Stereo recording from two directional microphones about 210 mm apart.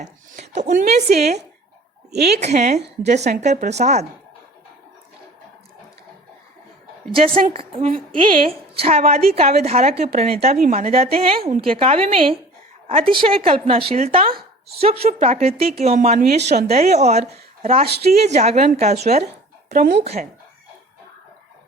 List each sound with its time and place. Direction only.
0.0 s speech: 35° right (ahead or behind)
2.1 s speech: 50° right (ahead or behind)
2.4 s a woman's voice: 35° right (ahead or behind)
7.3 s a woman's voice: 25° right (ahead or behind)
17.8 s speech: 50° right (ahead or behind)
18.2 s a woman's voice: 30° right (ahead or behind)
19.7 s speech: 50° right (ahead or behind)